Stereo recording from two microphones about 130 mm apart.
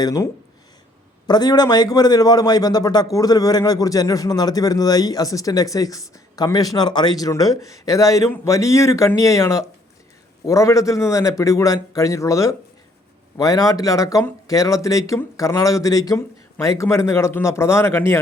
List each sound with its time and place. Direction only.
0.0 s a man's voice: 30° left (ahead or behind)
1.3 s a man's voice: 30° left (ahead or behind)